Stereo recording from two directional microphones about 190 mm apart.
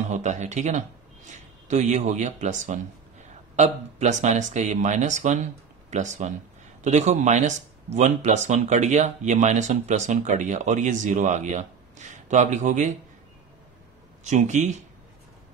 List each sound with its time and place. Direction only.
0.1 s speech: 40° right (ahead or behind)
14.2 s speech: 40° right (ahead or behind)